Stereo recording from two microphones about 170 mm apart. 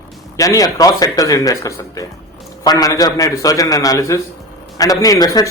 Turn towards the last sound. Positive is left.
turn(degrees=20)  # may be behind; listen again after turning